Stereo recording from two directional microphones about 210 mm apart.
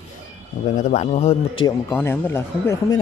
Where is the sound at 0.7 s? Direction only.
35° left (ahead or behind).